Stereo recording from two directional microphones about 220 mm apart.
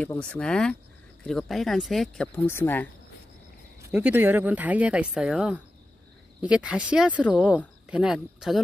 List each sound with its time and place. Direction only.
0.0 s speech: 5° left (ahead or behind)
3.9 s speech: 10° right (ahead or behind)